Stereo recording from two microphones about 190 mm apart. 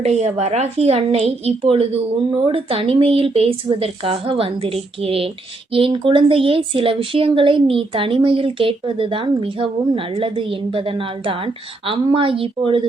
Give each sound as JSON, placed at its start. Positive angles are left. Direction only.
{"t": 0.0, "sound": "a woman's voice", "side_deg": -35}